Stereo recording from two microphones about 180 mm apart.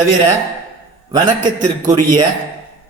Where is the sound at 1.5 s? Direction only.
45° right (ahead or behind).